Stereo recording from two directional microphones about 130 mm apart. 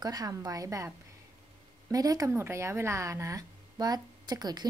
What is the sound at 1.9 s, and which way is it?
A woman's voice, 30° right (ahead or behind).